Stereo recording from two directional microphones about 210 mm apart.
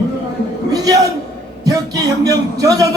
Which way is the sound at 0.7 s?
15° right (ahead or behind).